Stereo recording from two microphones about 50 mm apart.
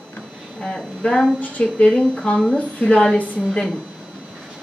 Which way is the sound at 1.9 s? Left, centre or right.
Centre.